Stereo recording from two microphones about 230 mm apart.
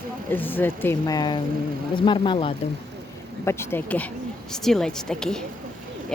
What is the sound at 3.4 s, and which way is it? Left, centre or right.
Speech, centre.